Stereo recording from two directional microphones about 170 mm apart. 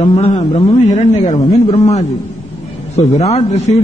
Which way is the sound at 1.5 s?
25° left (ahead or behind).